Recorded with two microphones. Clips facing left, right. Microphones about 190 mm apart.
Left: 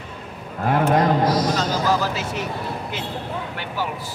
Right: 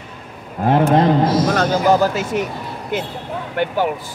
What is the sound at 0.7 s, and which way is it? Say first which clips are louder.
Speech: right 4 dB; 25° right (ahead or behind).